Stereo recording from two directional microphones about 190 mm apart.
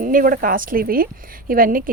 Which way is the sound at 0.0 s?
45° right (ahead or behind).